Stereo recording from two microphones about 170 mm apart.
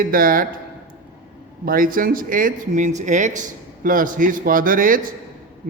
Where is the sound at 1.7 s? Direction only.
55° right (ahead or behind).